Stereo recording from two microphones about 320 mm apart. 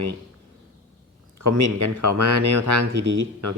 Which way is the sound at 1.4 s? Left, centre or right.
Right.